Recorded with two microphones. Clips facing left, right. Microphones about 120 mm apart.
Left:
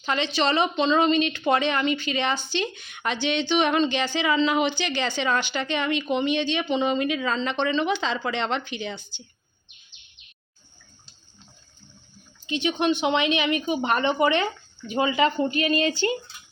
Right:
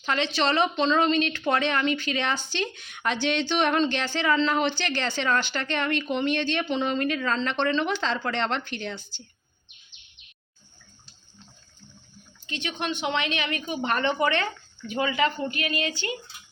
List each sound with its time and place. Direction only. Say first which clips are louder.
0.0 s a woman's voice: left 1 dB; 5° left (ahead or behind)
12.5 s speech: left 8 dB; 15° left (ahead or behind); by 16.3 s 35° left (ahead or behind)